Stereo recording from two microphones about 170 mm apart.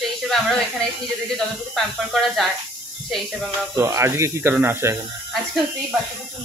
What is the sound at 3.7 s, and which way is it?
Speech, 15° right (ahead or behind).